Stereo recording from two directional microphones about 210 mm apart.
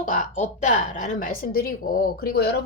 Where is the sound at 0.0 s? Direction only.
35° left (ahead or behind).